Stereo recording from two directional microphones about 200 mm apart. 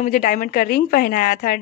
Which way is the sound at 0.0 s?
40° left (ahead or behind).